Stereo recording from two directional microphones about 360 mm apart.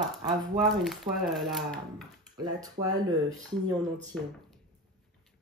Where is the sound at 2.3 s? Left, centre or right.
Centre.